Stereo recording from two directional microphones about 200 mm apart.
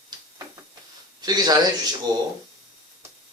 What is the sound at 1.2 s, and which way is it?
Speech, 20° right (ahead or behind).